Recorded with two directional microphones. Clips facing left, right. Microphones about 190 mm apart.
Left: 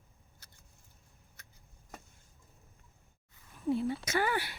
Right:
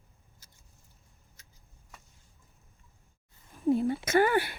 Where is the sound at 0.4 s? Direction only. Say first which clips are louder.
Left 1 dB; 60° left (ahead or behind).